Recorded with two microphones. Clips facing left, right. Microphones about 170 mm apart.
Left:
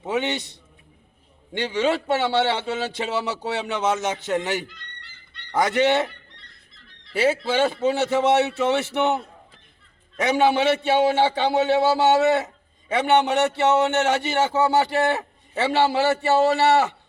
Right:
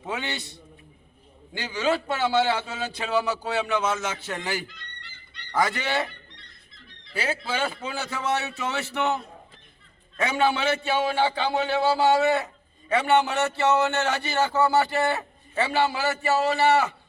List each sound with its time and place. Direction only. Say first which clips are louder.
0.0 s a man's voice: left 7 dB; 20° left (ahead or behind)
1.5 s a man's voice: left 3 dB; 25° left (ahead or behind)
4.7 s goose: even; centre (ahead or behind)
5.5 s a man's voice: left 6 dB; 20° left (ahead or behind)
7.1 s a man's voice: left 8 dB; 25° left (ahead or behind)